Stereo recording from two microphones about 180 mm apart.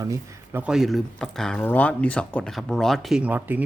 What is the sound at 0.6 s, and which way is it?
A man's voice, 5° right (ahead or behind).